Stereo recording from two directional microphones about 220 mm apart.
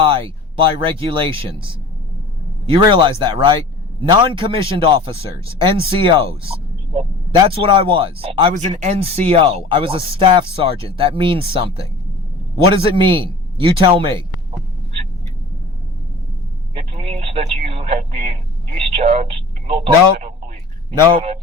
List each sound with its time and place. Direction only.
0.1 s speech: 25° right (ahead or behind)
6.4 s a sound: 25° right (ahead or behind)
7.8 s speech: 25° right (ahead or behind)
12.8 s speech: 20° right (ahead or behind)
16.7 s radio: 25° right (ahead or behind)
18.9 s speech: 30° right (ahead or behind)